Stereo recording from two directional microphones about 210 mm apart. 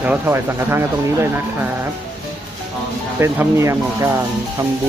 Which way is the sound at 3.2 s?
15° right (ahead or behind).